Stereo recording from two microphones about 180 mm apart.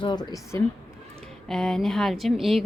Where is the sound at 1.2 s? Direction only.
Centre (ahead or behind).